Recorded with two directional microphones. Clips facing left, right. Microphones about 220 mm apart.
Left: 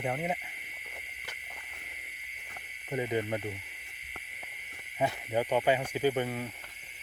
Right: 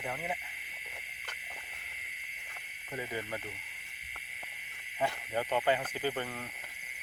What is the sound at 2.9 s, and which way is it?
Speech, 20° left (ahead or behind).